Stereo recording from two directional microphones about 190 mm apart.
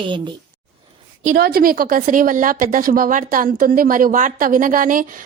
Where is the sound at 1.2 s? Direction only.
50° right (ahead or behind).